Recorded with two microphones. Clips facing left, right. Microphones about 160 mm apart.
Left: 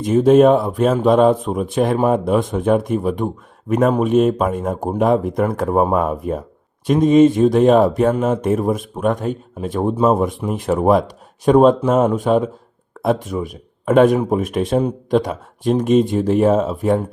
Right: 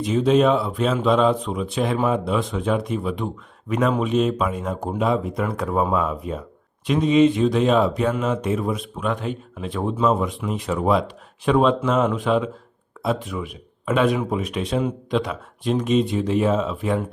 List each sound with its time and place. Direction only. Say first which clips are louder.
0.0 s speech: left 6 dB; 45° left (ahead or behind)